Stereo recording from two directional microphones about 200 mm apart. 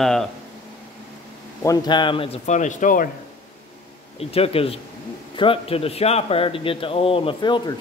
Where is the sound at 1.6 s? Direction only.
20° left (ahead or behind); by 3.0 s 40° left (ahead or behind).